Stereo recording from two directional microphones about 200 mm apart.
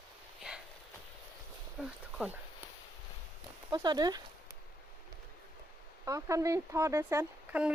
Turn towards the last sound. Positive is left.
turn(degrees=-10)  # may be behind; listen again after turning